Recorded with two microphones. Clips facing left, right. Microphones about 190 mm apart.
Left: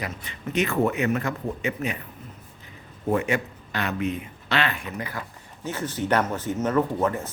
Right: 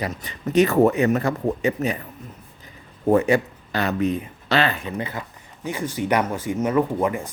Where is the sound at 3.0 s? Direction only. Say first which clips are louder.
Right 6 dB; 35° right (ahead or behind).